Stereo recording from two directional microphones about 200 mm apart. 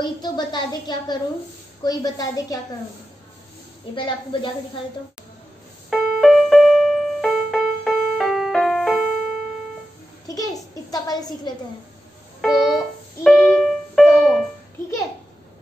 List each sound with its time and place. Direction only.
0.0 s speech: 20° left (ahead or behind)
3.9 s speech: 25° left (ahead or behind)
5.9 s music: centre (ahead or behind)
10.2 s a sound: 15° left (ahead or behind)
12.4 s keyboard: centre (ahead or behind)